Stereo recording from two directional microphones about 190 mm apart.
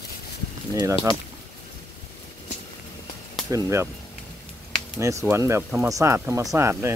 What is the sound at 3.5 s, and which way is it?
Speech, 15° right (ahead or behind).